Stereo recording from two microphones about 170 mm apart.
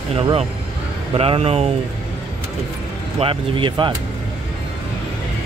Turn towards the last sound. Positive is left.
turn(degrees=-30)  # may be behind; listen again after turning